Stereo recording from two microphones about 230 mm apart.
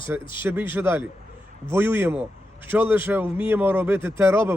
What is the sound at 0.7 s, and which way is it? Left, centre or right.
Speech, centre.